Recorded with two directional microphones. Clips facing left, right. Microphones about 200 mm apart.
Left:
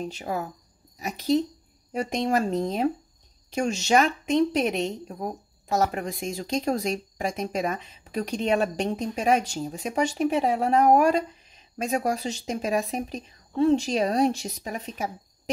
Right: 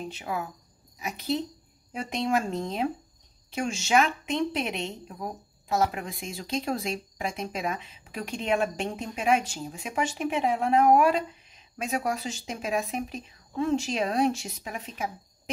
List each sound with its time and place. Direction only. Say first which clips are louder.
0.2 s a woman's voice: left 1 dB; 40° left (ahead or behind)
1.9 s a woman's voice: left 3 dB; 40° left (ahead or behind)